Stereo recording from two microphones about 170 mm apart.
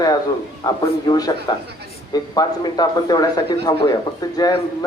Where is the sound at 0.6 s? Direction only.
20° left (ahead or behind).